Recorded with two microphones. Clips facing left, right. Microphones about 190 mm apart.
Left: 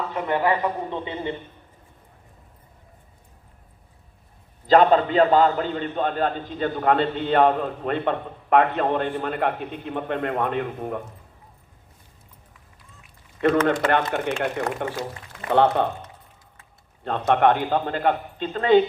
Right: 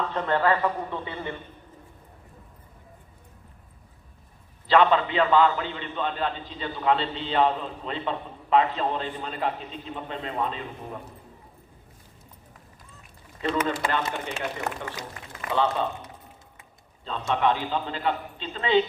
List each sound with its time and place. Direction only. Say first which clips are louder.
0.0 s a man's voice: left 1 dB; 10° left (ahead or behind)
4.6 s a man's voice: left 4 dB; 40° left (ahead or behind); by 11.0 s 60° left (ahead or behind)
13.8 s a man's voice: left 6 dB; 60° left (ahead or behind)
17.0 s a man's voice: left 6 dB; 60° left (ahead or behind)